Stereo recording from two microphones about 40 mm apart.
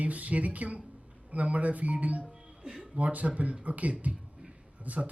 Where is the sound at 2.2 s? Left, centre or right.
Right.